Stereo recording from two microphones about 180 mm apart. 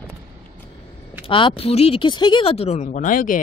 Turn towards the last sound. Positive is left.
turn(degrees=50)  # may be behind; listen again after turning